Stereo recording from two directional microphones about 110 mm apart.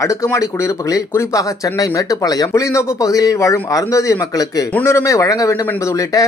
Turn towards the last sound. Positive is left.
turn(degrees=30)  # may be behind; listen again after turning